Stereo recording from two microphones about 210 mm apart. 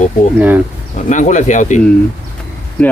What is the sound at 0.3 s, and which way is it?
Speech, 10° right (ahead or behind).